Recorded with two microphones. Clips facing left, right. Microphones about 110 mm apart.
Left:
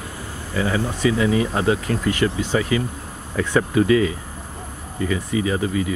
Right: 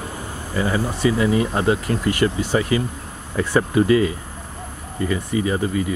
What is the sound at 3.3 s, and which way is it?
Speech, 5° right (ahead or behind).